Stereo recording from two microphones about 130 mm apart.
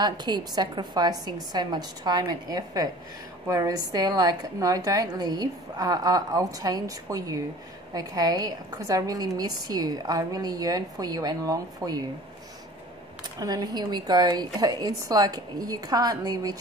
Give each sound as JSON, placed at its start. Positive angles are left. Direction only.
{"t": 0.0, "sound": "a woman's voice", "side_deg": -35}
{"t": 13.2, "sound": "a woman's voice", "side_deg": -30}